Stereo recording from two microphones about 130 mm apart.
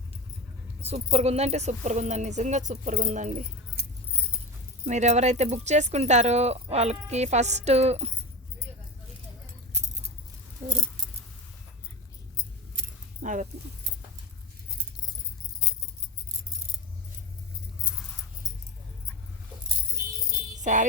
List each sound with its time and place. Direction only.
0.9 s speech: 50° right (ahead or behind); by 3.3 s 70° right (ahead or behind)
4.9 s speech: 60° right (ahead or behind)
9.7 s keys jangling: 60° right (ahead or behind)
13.2 s speech: 80° right
20.6 s music: 70° right (ahead or behind)